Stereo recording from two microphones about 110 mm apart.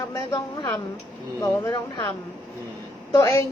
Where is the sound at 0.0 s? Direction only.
30° left (ahead or behind).